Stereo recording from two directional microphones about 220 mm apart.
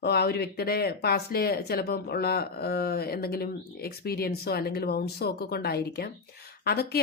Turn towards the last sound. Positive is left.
turn(degrees=45)  # may be behind; listen again after turning